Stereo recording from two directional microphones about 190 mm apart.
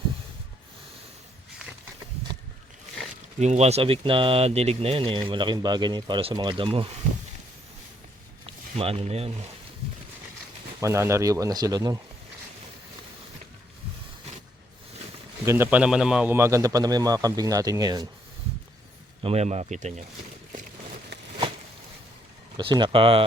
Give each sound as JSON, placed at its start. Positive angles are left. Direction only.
{"t": 3.4, "sound": "speech", "side_deg": -35}
{"t": 8.4, "sound": "a sound", "side_deg": -30}
{"t": 10.8, "sound": "a man's voice", "side_deg": -15}
{"t": 15.4, "sound": "a man's voice", "side_deg": -10}
{"t": 19.2, "sound": "speech", "side_deg": -35}
{"t": 22.5, "sound": "speech", "side_deg": -25}